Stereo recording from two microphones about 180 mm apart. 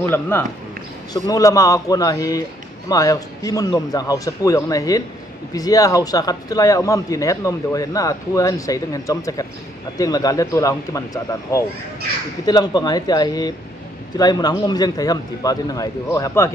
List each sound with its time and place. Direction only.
0.1 s a man's voice: 10° left (ahead or behind)
12.4 s speech: 20° left (ahead or behind)